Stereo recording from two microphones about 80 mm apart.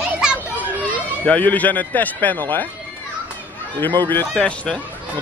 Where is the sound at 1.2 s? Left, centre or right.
Centre.